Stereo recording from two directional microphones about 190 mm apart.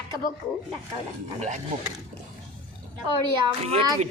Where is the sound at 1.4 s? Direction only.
40° right (ahead or behind).